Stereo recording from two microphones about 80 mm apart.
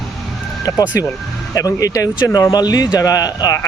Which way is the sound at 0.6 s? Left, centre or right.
Left.